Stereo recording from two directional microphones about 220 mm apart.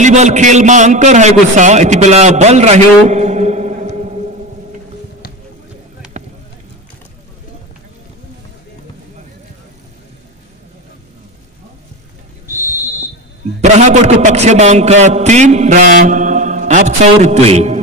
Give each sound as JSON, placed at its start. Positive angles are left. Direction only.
{"t": 0.0, "sound": "a man's voice", "side_deg": -30}
{"t": 13.6, "sound": "a man's voice", "side_deg": -30}